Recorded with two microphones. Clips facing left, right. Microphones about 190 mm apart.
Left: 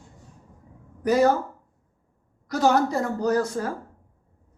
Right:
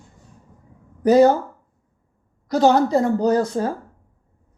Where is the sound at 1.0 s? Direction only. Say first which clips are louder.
Right 7 dB; 30° right (ahead or behind).